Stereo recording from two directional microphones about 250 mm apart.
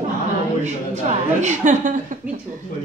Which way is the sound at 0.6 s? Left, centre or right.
Right.